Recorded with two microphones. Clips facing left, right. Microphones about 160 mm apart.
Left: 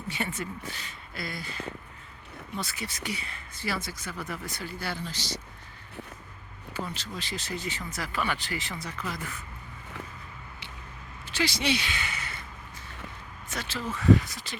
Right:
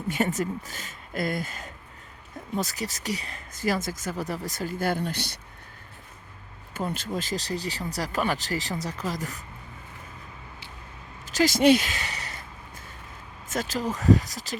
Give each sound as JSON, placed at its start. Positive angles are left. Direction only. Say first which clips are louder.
{"t": 0.1, "sound": "speech", "louder": "right 8 dB", "side_deg": -40}
{"t": 6.7, "sound": "speech", "louder": "right 6 dB", "side_deg": -50}
{"t": 11.3, "sound": "speech", "louder": "right 9 dB", "side_deg": -45}
{"t": 13.5, "sound": "speech", "louder": "right 6 dB", "side_deg": -45}